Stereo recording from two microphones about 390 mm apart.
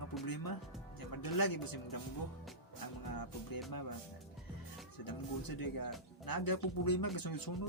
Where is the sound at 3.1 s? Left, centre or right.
Left.